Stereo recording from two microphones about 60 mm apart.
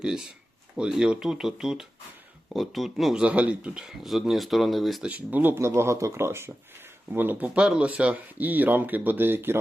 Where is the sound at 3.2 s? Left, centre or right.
Right.